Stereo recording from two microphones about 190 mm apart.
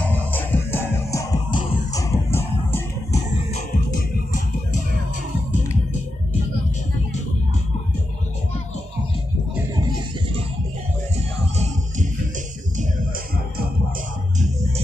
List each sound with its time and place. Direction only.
0.0 s music: 10° left (ahead or behind)
11.3 s music: 35° right (ahead or behind)